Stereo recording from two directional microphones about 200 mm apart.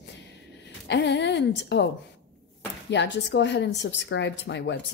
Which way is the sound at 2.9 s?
60° left (ahead or behind).